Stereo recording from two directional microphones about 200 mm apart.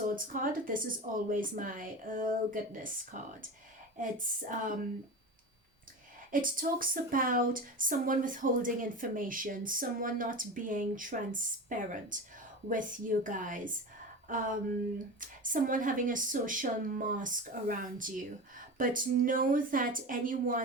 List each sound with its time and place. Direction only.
0.3 s speech: 45° right (ahead or behind)
4.4 s speech: 40° right (ahead or behind)
6.3 s speech: 45° right (ahead or behind)